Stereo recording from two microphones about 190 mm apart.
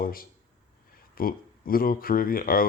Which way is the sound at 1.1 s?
50° left (ahead or behind).